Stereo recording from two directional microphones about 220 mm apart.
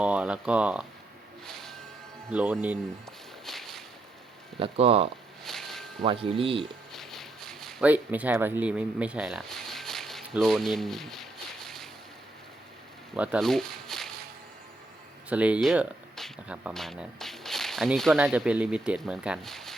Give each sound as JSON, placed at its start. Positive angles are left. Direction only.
{"t": 0.0, "sound": "speech", "side_deg": -5}
{"t": 2.3, "sound": "speech", "side_deg": -10}
{"t": 3.4, "sound": "walk", "side_deg": 0}
{"t": 4.6, "sound": "speech", "side_deg": -25}
{"t": 5.4, "sound": "a sound", "side_deg": 0}
{"t": 6.0, "sound": "speech", "side_deg": -25}
{"t": 6.9, "sound": "a sound", "side_deg": 0}
{"t": 13.1, "sound": "speech", "side_deg": -5}
{"t": 15.3, "sound": "speech", "side_deg": -5}